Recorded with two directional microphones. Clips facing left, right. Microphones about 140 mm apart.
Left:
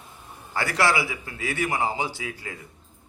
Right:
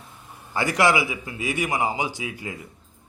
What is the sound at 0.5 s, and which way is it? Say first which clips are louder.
Speech: right 3 dB; 15° right (ahead or behind).